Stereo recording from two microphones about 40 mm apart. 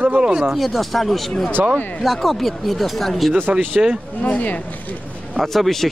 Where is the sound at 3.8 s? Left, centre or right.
Right.